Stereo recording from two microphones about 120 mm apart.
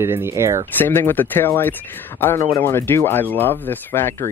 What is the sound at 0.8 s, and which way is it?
A man's voice, 20° left (ahead or behind).